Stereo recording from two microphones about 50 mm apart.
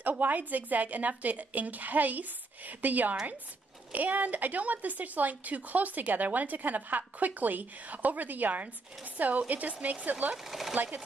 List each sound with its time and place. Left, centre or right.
0.0 s a woman's voice: right
10.3 s speech: centre